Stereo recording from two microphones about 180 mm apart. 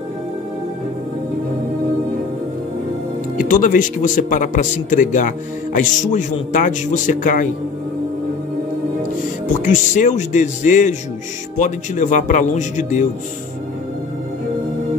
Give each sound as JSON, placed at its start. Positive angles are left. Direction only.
{"t": 3.3, "sound": "a man's voice", "side_deg": 50}
{"t": 9.5, "sound": "a man's voice", "side_deg": 45}